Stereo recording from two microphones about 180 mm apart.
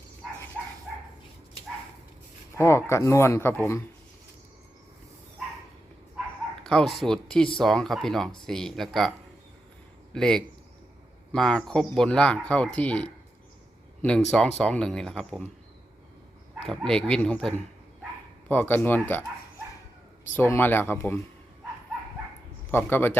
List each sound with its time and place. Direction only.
2.6 s speech: 15° left (ahead or behind)
6.6 s a man's voice: 5° left (ahead or behind)
16.6 s speech: 5° left (ahead or behind)
20.3 s speech: 10° left (ahead or behind)
22.8 s speech: 10° left (ahead or behind)